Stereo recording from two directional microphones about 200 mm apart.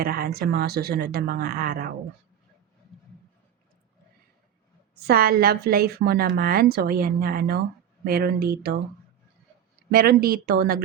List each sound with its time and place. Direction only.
0.0 s a woman's voice: 50° right (ahead or behind)
5.0 s a woman's voice: 50° right (ahead or behind)
9.9 s a woman's voice: 50° right (ahead or behind)